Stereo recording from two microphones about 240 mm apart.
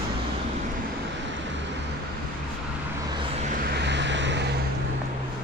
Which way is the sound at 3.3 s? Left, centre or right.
Right.